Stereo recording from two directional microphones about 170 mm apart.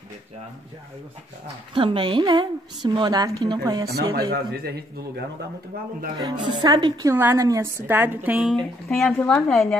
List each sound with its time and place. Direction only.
1.8 s a woman's voice: 30° right (ahead or behind)
3.9 s speech: 65° right (ahead or behind)
6.1 s a woman's voice: 25° right (ahead or behind); by 9.8 s 5° left (ahead or behind)